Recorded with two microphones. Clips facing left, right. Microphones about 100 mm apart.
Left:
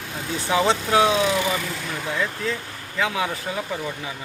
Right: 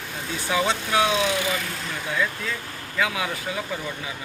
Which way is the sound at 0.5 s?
30° left (ahead or behind).